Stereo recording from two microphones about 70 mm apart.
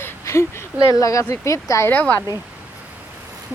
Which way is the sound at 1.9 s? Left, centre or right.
Left.